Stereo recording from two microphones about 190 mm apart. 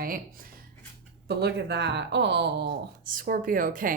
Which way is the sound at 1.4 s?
60° right (ahead or behind).